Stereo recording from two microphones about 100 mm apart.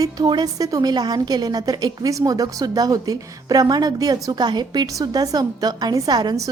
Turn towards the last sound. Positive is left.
turn(degrees=-40)  # may be behind; listen again after turning